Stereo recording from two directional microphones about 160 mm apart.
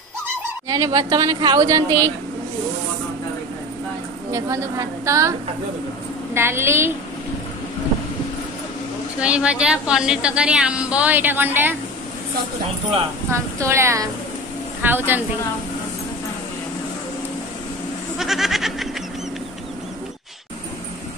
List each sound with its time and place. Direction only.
0.7 s a woman's voice: 25° right (ahead or behind)
4.3 s a woman's voice: 20° right (ahead or behind)
6.3 s a woman's voice: 15° right (ahead or behind)
9.2 s a woman's voice: 5° right (ahead or behind)
13.3 s a woman's voice: 15° right (ahead or behind)
18.1 s a sound: centre (ahead or behind)